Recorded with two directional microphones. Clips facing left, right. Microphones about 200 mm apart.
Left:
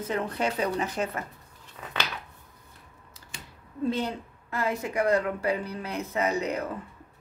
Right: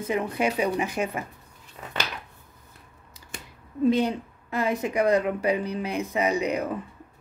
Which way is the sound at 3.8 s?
15° right (ahead or behind).